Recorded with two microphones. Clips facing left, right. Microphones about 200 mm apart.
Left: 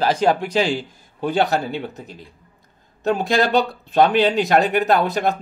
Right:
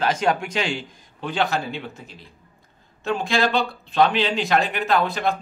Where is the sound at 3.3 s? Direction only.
45° left (ahead or behind).